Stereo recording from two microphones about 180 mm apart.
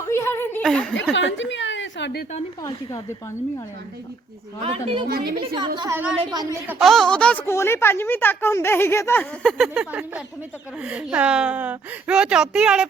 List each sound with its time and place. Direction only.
0.0 s snicker: 15° left (ahead or behind)
0.6 s a woman's voice: 5° left (ahead or behind)
1.1 s a woman's voice: 90° left
2.6 s speech: 20° left (ahead or behind)
4.6 s a woman's voice: 35° right (ahead or behind)
5.0 s a woman's voice: 55° right (ahead or behind)
5.5 s a woman's voice: 25° right (ahead or behind)
6.7 s speech: centre (ahead or behind)
9.4 s a woman's voice: centre (ahead or behind)